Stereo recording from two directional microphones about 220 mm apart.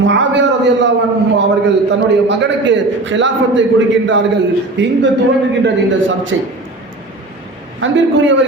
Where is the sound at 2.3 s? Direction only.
55° right (ahead or behind).